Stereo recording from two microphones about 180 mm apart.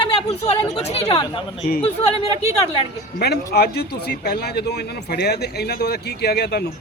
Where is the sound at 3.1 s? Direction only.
60° left (ahead or behind).